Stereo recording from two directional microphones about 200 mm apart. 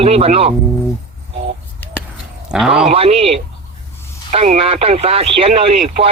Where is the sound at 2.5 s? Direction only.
5° right (ahead or behind).